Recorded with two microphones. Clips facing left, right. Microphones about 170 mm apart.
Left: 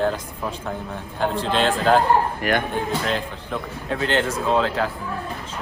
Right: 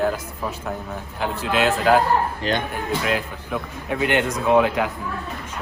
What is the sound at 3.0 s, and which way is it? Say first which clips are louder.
Speech: right 1 dB; 5° right (ahead or behind).